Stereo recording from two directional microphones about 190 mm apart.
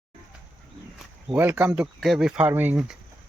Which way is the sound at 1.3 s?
10° right (ahead or behind).